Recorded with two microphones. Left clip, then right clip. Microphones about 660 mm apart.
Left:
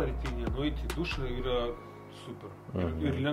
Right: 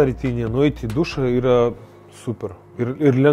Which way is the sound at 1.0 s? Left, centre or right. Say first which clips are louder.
Right 17 dB; right.